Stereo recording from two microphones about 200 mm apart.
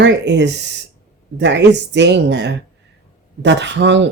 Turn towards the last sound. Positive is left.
turn(degrees=-60)  # may be behind; listen again after turning